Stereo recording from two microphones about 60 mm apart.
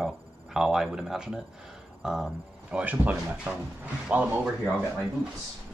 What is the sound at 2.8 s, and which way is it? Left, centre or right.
Speech, right.